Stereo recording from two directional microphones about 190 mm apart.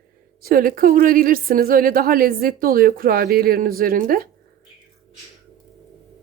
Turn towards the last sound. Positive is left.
turn(degrees=-50)  # may be behind; listen again after turning